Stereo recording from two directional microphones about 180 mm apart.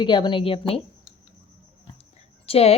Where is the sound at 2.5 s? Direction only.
35° left (ahead or behind).